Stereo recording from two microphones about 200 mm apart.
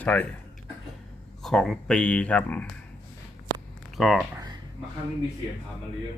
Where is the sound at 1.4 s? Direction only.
Centre (ahead or behind).